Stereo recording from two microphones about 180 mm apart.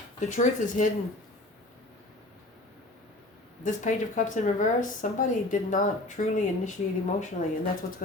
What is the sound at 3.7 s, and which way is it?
Speech, 45° left (ahead or behind).